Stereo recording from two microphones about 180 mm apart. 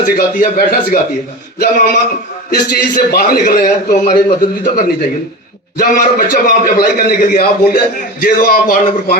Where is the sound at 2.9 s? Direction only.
60° left (ahead or behind).